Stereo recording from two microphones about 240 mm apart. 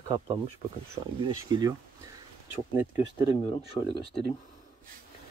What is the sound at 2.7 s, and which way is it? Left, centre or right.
Speech, centre.